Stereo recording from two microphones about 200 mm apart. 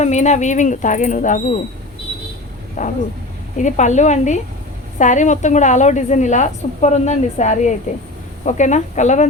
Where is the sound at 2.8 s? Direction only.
40° left (ahead or behind).